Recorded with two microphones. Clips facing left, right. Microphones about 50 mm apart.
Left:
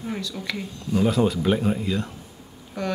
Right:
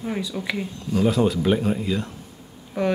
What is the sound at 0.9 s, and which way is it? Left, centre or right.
Speech, centre.